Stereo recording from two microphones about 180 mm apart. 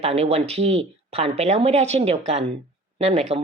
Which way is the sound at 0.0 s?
35° right (ahead or behind).